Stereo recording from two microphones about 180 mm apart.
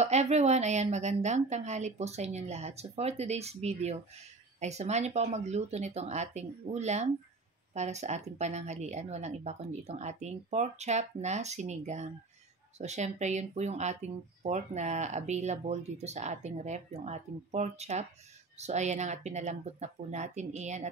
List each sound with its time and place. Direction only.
0.0 s speech: 35° right (ahead or behind)